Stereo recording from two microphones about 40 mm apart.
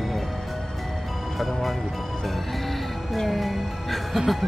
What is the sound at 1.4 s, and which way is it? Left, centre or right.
Music, centre.